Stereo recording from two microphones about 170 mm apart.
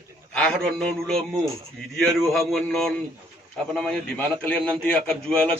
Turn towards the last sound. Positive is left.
turn(degrees=5)  # may be behind; listen again after turning